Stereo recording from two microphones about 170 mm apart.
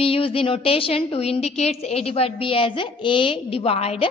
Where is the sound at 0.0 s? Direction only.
35° left (ahead or behind).